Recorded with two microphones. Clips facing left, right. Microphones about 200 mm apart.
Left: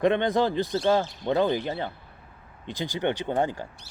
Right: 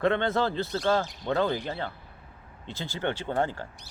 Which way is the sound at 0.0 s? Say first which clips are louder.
Left 3 dB; 15° left (ahead or behind).